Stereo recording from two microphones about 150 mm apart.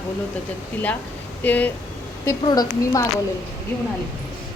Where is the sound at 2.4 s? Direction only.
25° left (ahead or behind).